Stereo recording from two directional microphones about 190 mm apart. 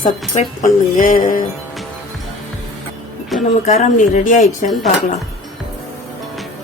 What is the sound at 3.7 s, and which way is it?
A woman's voice, 35° left (ahead or behind).